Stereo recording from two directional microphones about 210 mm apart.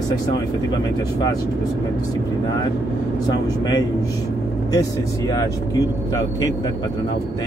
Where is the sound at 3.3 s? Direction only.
20° left (ahead or behind).